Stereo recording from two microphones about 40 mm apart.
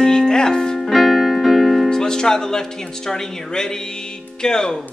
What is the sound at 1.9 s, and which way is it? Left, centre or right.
A man's voice, centre.